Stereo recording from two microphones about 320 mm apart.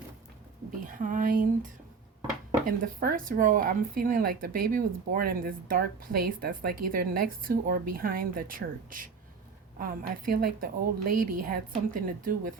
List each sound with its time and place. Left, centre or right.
0.9 s a woman's voice: right
2.6 s speech: right